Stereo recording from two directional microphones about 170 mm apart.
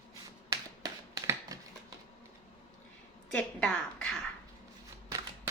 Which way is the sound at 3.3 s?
5° left (ahead or behind).